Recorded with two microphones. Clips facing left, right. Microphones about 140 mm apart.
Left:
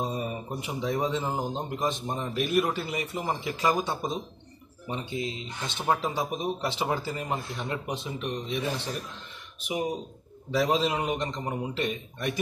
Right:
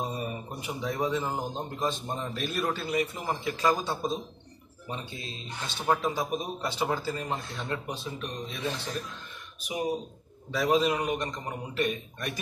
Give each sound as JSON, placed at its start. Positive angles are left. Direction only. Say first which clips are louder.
{"t": 0.0, "sound": "a man's voice", "louder": "left 2 dB", "side_deg": 20}
{"t": 9.6, "sound": "a man's voice", "louder": "left 1 dB", "side_deg": 25}